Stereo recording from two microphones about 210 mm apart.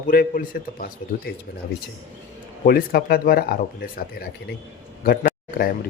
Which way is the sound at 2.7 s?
45° left (ahead or behind).